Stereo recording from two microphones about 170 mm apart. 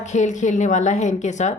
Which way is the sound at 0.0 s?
45° left (ahead or behind).